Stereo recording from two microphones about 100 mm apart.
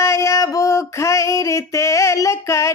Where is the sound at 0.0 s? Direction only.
30° left (ahead or behind).